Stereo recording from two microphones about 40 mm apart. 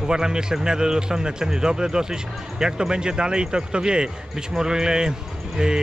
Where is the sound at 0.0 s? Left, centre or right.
Centre.